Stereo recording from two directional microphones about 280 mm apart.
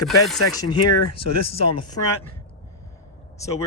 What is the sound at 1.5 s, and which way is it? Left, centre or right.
Speech, left.